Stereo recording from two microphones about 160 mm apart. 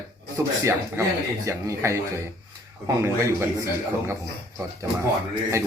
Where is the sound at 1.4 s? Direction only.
20° right (ahead or behind).